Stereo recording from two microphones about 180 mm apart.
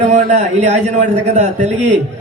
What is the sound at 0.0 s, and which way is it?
A man's voice, 40° right (ahead or behind).